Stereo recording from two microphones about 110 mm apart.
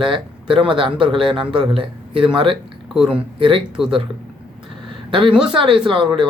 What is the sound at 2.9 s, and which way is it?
Speech, 5° right (ahead or behind).